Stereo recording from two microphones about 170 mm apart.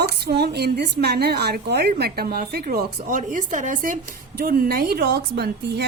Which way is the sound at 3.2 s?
50° right (ahead or behind).